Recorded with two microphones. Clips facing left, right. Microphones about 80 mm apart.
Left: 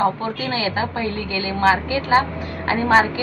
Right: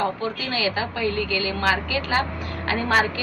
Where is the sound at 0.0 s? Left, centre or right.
Left.